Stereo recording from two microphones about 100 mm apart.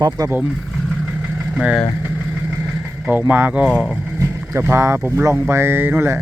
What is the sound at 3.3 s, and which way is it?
Speech, 15° right (ahead or behind).